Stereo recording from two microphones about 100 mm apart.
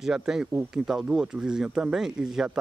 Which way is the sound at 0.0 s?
5° right (ahead or behind).